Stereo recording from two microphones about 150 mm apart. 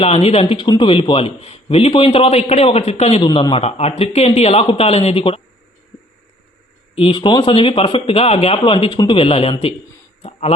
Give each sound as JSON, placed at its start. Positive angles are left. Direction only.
{"t": 0.0, "sound": "speech", "side_deg": 40}
{"t": 3.2, "sound": "speech", "side_deg": 30}
{"t": 6.9, "sound": "speech", "side_deg": 35}